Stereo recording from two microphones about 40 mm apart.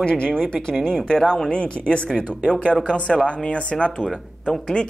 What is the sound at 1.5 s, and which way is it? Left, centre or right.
Speech, left.